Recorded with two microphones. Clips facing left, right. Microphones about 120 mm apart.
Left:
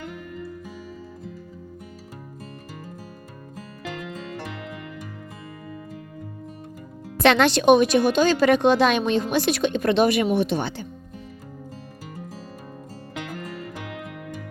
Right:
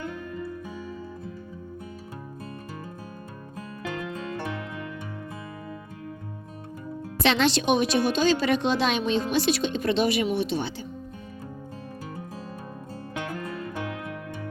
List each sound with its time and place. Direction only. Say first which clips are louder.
7.2 s speech: left 5 dB; 55° left (ahead or behind)